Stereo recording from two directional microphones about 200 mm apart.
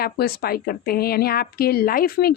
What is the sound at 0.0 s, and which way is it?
A woman's voice, 50° left (ahead or behind).